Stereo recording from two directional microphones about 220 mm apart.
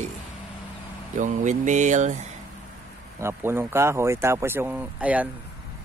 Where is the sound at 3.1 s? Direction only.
10° right (ahead or behind).